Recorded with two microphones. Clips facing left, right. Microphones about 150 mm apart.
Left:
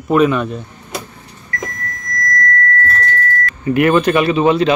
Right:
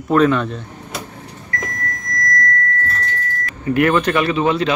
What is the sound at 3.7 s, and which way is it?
Speech, 15° left (ahead or behind).